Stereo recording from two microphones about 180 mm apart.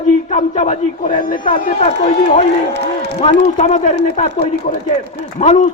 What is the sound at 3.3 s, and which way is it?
A man's voice, 35° left (ahead or behind).